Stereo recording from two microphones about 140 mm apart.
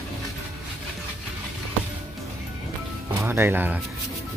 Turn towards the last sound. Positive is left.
turn(degrees=-15)  # may be behind; listen again after turning